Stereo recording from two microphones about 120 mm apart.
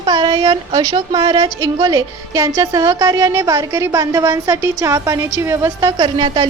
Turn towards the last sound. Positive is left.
turn(degrees=-40)  # may be behind; listen again after turning